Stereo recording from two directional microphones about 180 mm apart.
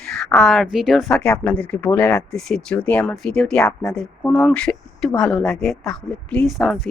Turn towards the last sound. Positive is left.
turn(degrees=0)  # may be behind; listen again after turning